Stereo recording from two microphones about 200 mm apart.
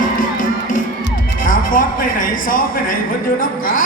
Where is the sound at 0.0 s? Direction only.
40° left (ahead or behind).